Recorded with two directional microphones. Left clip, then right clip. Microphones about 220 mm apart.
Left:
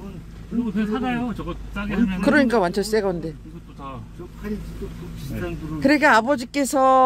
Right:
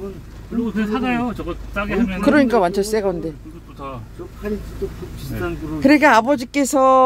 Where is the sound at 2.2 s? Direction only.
5° left (ahead or behind).